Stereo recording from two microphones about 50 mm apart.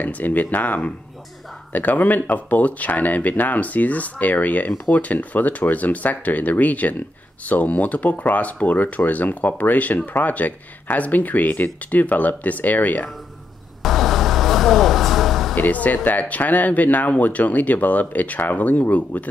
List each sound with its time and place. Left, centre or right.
0.0 s speech: left
13.8 s vehicle: centre
15.5 s speech: left